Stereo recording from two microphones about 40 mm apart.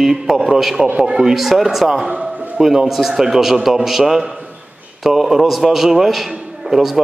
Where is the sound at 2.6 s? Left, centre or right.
Centre.